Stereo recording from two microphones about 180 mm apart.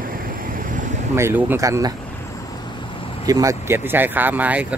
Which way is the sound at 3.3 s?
20° right (ahead or behind).